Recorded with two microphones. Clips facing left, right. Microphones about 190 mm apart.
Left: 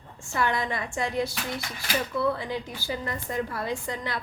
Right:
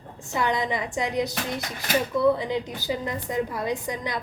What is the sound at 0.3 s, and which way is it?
A woman's voice, 20° right (ahead or behind).